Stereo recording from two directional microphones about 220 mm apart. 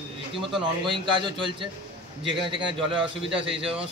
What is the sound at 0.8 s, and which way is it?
A man's voice, 20° right (ahead or behind).